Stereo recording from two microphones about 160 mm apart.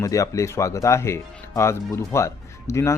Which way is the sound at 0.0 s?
20° left (ahead or behind).